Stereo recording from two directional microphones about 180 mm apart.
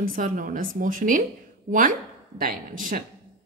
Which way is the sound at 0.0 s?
50° right (ahead or behind).